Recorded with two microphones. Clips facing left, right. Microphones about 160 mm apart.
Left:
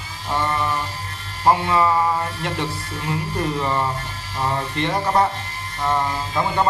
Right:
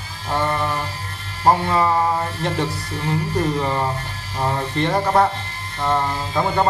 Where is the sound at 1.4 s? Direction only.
40° right (ahead or behind).